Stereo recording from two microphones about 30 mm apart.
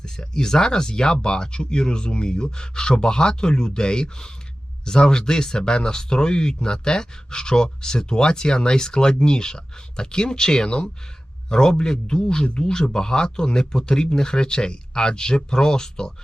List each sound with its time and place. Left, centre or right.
0.0 s speech: left